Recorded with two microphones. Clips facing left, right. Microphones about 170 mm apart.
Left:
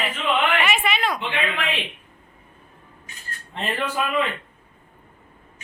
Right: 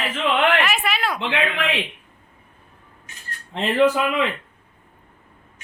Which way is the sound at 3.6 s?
90° right.